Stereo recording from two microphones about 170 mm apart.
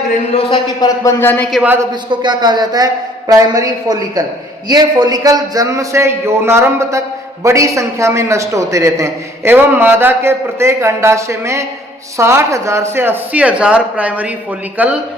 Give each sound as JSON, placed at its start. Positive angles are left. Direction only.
{"t": 0.5, "sound": "speech", "side_deg": 20}
{"t": 1.5, "sound": "a woman's voice", "side_deg": 0}
{"t": 1.9, "sound": "a man's voice", "side_deg": -25}